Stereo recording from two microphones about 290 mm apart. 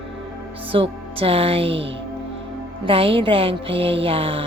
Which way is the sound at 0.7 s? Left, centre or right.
Centre.